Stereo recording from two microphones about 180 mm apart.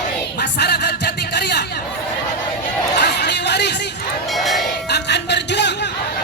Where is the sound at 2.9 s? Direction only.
65° left (ahead or behind).